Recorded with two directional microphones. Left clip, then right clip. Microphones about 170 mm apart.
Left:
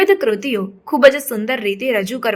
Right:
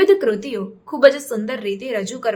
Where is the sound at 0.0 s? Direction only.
25° left (ahead or behind).